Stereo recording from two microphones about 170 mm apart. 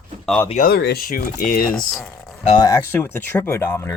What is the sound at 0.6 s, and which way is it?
Speech, 70° left (ahead or behind).